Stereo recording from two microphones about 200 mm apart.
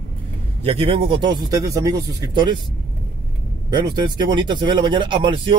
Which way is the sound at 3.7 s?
20° right (ahead or behind).